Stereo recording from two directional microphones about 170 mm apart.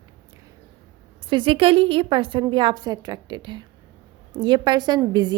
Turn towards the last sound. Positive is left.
turn(degrees=-25)  # may be behind; listen again after turning